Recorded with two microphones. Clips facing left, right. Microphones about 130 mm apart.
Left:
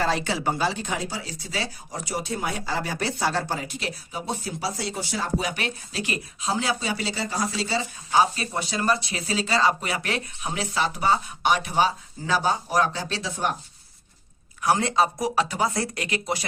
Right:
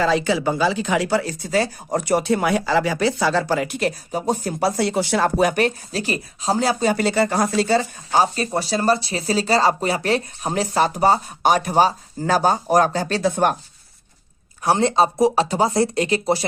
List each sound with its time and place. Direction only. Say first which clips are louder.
0.8 s speech: right 10 dB; 90° right
3.8 s speech: right 9 dB; 45° right (ahead or behind)
14.6 s speech: right 4 dB; 30° right (ahead or behind)